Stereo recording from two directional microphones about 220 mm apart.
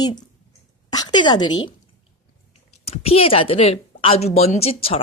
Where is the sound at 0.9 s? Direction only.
20° left (ahead or behind).